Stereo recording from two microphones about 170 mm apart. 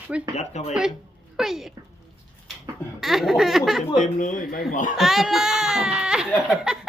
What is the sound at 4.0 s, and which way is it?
Speech, 50° left (ahead or behind).